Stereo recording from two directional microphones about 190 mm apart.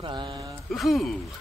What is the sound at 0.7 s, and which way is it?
Speech, centre (ahead or behind).